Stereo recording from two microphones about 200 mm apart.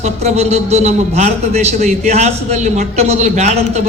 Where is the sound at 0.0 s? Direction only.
35° right (ahead or behind).